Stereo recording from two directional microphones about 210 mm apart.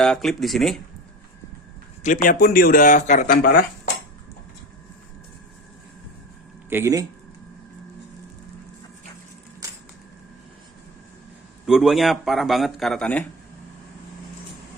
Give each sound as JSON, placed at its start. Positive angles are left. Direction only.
{"t": 0.0, "sound": "speech", "side_deg": 0}
{"t": 2.0, "sound": "speech", "side_deg": 40}
{"t": 6.7, "sound": "speech", "side_deg": -10}
{"t": 11.6, "sound": "speech", "side_deg": 0}